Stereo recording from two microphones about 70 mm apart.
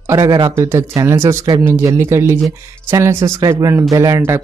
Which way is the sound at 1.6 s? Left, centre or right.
Right.